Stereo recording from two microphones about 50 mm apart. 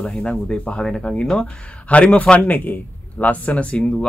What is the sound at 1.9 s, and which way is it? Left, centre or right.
Speech, left.